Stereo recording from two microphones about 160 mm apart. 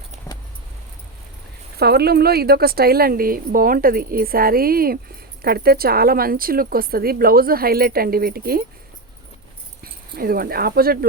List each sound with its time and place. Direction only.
1.8 s speech: 80° right
9.8 s speech: 70° right (ahead or behind)